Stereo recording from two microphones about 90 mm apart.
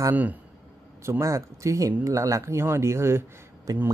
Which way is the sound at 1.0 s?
35° right (ahead or behind).